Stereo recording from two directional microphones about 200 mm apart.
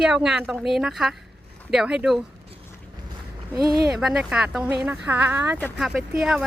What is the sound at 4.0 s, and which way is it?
Speech, 5° right (ahead or behind).